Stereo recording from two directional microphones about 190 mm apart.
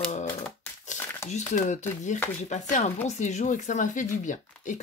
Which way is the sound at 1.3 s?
40° left (ahead or behind).